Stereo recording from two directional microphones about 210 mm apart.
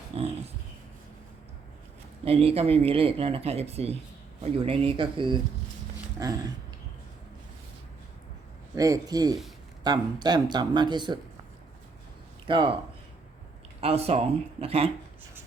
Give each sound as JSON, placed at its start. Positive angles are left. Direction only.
{"t": 0.1, "sound": "dog", "side_deg": -25}
{"t": 2.2, "sound": "a man's voice", "side_deg": -25}
{"t": 8.7, "sound": "a man's voice", "side_deg": -15}
{"t": 12.5, "sound": "speech", "side_deg": -25}
{"t": 13.8, "sound": "speech", "side_deg": -30}